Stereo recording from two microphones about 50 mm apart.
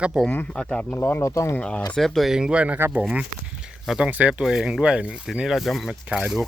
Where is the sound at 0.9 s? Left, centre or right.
Left.